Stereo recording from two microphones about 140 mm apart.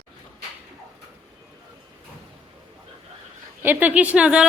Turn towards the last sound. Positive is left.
turn(degrees=-5)  # may be behind; listen again after turning